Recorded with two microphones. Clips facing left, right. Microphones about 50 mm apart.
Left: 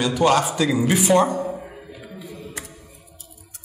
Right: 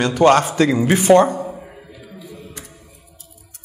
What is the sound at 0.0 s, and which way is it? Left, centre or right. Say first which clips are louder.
A man's voice: right 5 dB; right.